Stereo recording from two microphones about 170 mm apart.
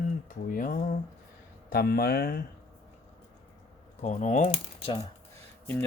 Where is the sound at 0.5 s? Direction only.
55° left (ahead or behind).